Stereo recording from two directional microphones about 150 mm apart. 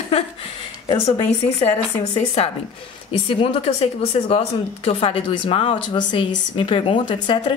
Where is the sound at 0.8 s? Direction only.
35° left (ahead or behind).